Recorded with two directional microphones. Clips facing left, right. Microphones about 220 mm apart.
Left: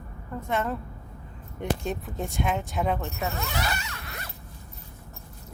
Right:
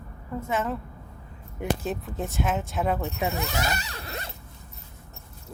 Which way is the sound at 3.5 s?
40° right (ahead or behind).